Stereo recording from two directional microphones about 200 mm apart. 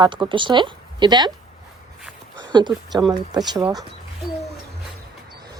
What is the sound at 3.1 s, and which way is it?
Speech, 20° right (ahead or behind).